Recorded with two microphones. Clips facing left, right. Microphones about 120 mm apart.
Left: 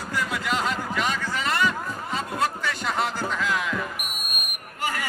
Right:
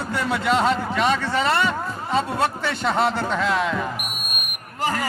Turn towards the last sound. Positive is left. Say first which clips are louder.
# right 5 dB
turn(degrees=-35)  # may be behind; listen again after turning